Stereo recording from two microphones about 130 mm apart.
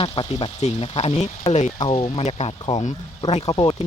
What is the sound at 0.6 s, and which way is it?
Speech, 50° left (ahead or behind).